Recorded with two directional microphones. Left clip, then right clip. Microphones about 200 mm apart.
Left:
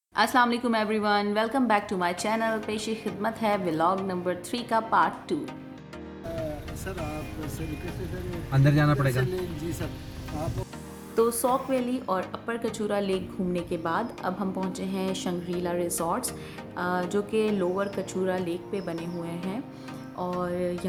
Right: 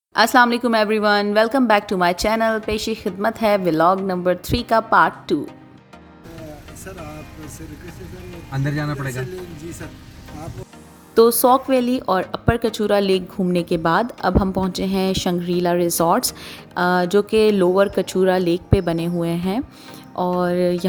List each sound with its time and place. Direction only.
0.1 s a woman's voice: 40° right (ahead or behind)
8.5 s a man's voice: 20° left (ahead or behind)
11.1 s speech: 40° right (ahead or behind)